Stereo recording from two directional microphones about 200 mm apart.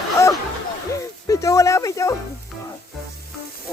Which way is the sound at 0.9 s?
15° left (ahead or behind).